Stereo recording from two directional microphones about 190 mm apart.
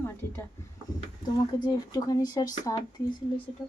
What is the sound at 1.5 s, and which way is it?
Speech, 20° left (ahead or behind).